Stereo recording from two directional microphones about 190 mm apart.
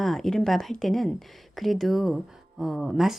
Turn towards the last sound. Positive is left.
turn(degrees=0)  # may be behind; listen again after turning